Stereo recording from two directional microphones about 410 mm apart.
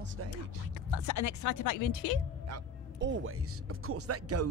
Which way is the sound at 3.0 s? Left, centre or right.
Right.